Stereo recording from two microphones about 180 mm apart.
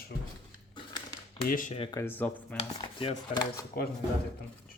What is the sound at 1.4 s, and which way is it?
Speech, 50° left (ahead or behind).